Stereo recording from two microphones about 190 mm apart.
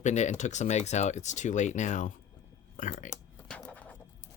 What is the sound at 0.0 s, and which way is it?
Speech, 40° left (ahead or behind).